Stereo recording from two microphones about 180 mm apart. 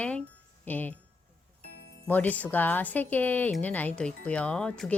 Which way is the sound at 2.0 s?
10° left (ahead or behind).